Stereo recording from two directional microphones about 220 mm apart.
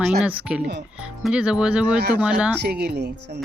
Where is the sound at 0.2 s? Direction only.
5° right (ahead or behind).